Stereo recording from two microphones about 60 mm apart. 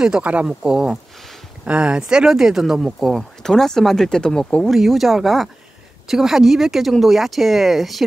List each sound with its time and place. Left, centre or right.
0.2 s speech: right
2.8 s speech: centre
4.6 s speech: centre